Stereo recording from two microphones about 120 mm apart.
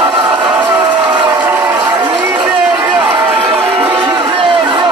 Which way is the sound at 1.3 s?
15° right (ahead or behind).